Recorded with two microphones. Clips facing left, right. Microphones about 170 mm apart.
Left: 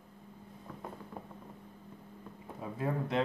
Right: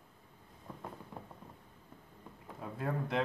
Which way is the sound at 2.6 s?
Centre (ahead or behind).